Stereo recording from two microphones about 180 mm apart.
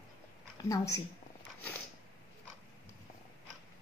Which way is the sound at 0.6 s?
20° left (ahead or behind).